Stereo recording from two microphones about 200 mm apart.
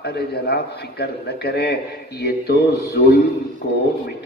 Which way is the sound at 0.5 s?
55° left (ahead or behind).